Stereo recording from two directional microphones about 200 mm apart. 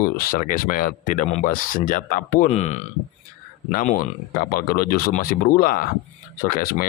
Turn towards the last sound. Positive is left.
turn(degrees=45)  # may be behind; listen again after turning